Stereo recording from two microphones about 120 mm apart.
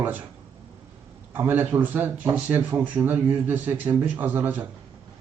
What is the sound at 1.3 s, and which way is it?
Speech, 15° right (ahead or behind).